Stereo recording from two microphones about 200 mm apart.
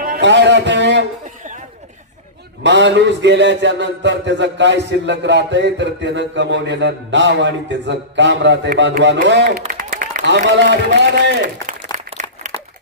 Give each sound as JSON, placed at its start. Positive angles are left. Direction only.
{"t": 0.0, "sound": "a man's voice", "side_deg": -55}
{"t": 2.6, "sound": "a man's voice", "side_deg": -60}
{"t": 9.7, "sound": "a man's voice", "side_deg": -45}
{"t": 11.6, "sound": "applause", "side_deg": -40}